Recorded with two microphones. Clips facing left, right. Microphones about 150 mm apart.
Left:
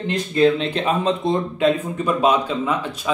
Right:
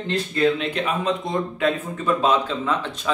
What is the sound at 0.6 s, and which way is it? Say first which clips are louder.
Speech: left 3 dB; 30° left (ahead or behind).